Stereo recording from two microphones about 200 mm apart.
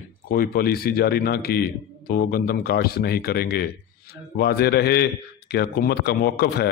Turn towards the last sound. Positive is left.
turn(degrees=55)  # may be behind; listen again after turning